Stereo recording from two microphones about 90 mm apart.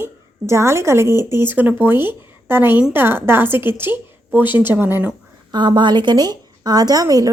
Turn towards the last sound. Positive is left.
turn(degrees=-40)  # may be behind; listen again after turning